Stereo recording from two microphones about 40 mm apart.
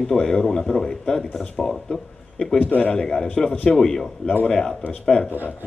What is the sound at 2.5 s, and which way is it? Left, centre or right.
Speech, left.